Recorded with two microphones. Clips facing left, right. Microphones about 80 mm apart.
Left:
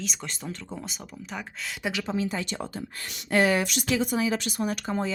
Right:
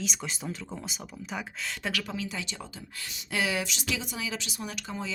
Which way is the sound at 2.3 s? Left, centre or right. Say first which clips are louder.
Left 6 dB; left.